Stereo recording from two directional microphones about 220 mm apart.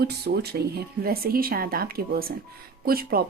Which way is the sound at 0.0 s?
45° right (ahead or behind).